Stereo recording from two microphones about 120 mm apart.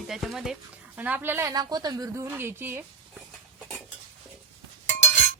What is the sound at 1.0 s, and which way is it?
A woman's voice, 15° right (ahead or behind).